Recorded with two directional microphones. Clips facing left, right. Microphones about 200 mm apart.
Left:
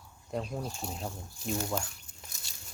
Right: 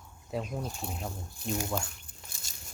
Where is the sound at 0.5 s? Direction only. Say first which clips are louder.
Even; centre (ahead or behind).